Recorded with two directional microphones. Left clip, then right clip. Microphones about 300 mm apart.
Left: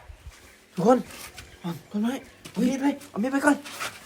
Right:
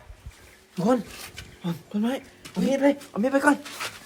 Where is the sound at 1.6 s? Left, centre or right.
Centre.